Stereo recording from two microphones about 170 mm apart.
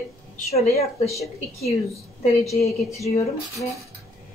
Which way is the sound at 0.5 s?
40° left (ahead or behind).